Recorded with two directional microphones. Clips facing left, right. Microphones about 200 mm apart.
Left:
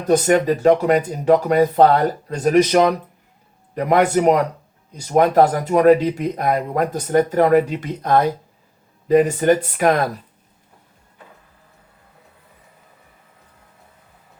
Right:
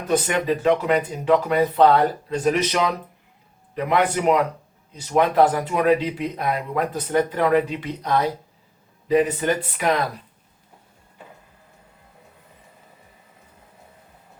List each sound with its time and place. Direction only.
0.1 s speech: 45° left (ahead or behind)